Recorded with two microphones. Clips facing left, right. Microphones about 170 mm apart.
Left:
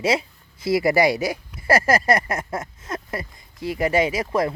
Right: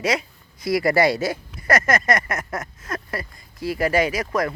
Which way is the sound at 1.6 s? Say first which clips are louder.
Left 2 dB; 30° left (ahead or behind).